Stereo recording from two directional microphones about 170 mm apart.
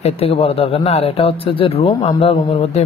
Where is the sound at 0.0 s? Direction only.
35° left (ahead or behind).